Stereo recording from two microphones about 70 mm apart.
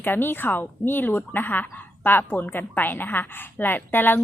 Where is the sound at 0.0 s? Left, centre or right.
Left.